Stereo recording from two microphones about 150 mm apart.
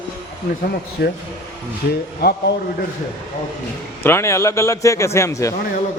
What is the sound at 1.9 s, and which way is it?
Speech, 90° left.